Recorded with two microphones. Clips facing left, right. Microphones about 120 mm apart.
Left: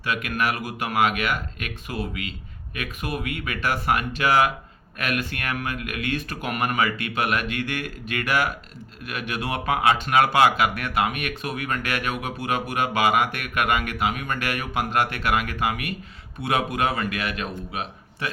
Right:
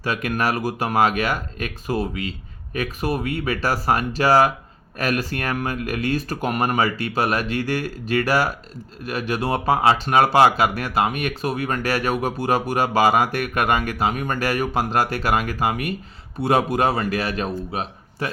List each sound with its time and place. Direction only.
0.0 s speech: 40° right (ahead or behind)